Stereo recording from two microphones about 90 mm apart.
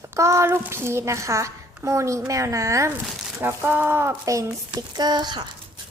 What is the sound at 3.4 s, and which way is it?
A child's voice, 20° right (ahead or behind).